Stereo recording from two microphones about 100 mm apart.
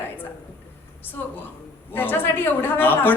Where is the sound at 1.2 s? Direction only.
25° left (ahead or behind).